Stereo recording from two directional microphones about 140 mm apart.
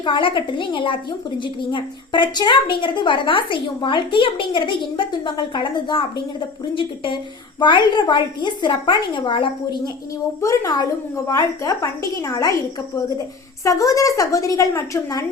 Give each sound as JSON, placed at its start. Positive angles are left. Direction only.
{"t": 0.0, "sound": "a woman's voice", "side_deg": 35}
{"t": 10.4, "sound": "a woman's voice", "side_deg": 20}
{"t": 13.7, "sound": "a woman's voice", "side_deg": 25}